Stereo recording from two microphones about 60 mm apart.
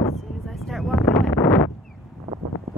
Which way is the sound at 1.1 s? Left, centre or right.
Left.